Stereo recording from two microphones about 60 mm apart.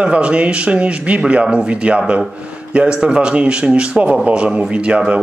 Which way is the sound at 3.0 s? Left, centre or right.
Centre.